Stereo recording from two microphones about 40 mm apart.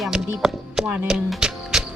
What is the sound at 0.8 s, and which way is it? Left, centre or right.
Speech, right.